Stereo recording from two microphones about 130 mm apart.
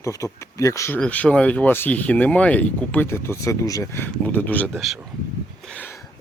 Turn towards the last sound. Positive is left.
turn(degrees=10)  # may be behind; listen again after turning